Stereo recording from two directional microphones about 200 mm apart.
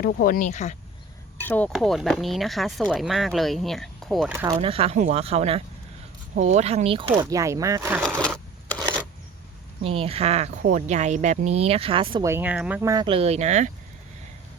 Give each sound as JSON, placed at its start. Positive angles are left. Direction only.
{"t": 0.0, "sound": "speech", "side_deg": 45}
{"t": 1.4, "sound": "speech", "side_deg": 10}
{"t": 4.3, "sound": "speech", "side_deg": -10}
{"t": 4.6, "sound": "speech", "side_deg": -30}
{"t": 7.2, "sound": "speech", "side_deg": -15}
{"t": 7.9, "sound": "a sound", "side_deg": 5}
{"t": 9.8, "sound": "speech", "side_deg": -30}
{"t": 12.2, "sound": "speech", "side_deg": -10}